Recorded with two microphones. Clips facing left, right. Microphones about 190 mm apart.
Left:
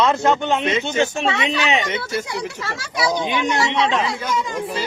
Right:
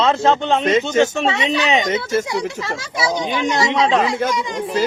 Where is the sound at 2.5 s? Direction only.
20° right (ahead or behind).